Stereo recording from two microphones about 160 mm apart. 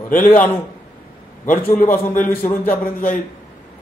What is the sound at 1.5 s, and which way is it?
A man's voice, 10° left (ahead or behind).